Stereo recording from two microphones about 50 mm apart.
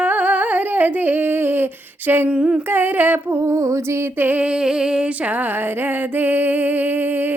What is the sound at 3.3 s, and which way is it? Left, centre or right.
Music, right.